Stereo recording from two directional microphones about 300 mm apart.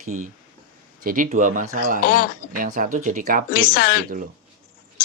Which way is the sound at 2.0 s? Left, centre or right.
Left.